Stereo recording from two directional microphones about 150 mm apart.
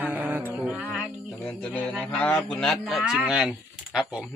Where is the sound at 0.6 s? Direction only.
10° right (ahead or behind).